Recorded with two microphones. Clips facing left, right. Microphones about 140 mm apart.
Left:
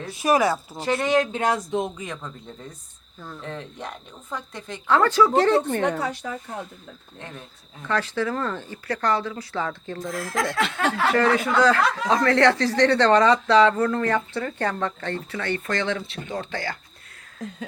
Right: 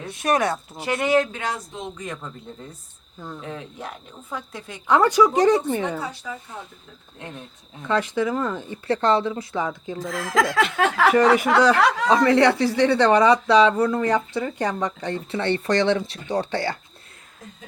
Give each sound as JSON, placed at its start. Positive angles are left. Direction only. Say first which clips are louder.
{"t": 0.0, "sound": "speech", "louder": "left 1 dB", "side_deg": 0}
{"t": 1.5, "sound": "speech", "louder": "left 7 dB", "side_deg": 60}
{"t": 2.0, "sound": "speech", "louder": "right 1 dB", "side_deg": 0}
{"t": 3.2, "sound": "speech", "louder": "right 1 dB", "side_deg": -15}
{"t": 7.2, "sound": "speech", "louder": "right 3 dB", "side_deg": -10}
{"t": 10.0, "sound": "speech", "louder": "right 5 dB", "side_deg": -90}
{"t": 11.1, "sound": "speech", "louder": "right 3 dB", "side_deg": -15}
{"t": 15.3, "sound": "speech", "louder": "right 7 dB", "side_deg": -25}